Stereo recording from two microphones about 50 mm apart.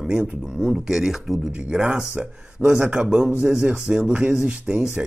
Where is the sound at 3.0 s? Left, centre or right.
Centre.